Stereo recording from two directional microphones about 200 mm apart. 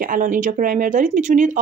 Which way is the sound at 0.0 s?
40° right (ahead or behind).